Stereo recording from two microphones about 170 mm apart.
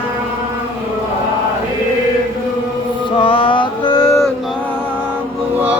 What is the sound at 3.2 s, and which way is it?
Mantra, 30° left (ahead or behind).